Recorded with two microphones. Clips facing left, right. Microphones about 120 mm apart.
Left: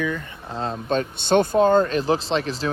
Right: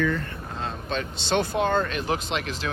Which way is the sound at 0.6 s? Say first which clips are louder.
Left 7 dB; 40° left (ahead or behind).